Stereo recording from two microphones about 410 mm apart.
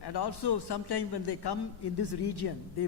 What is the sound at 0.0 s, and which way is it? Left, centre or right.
A man's voice, left.